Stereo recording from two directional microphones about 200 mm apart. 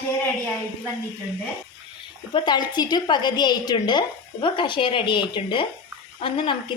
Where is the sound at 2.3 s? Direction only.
20° left (ahead or behind).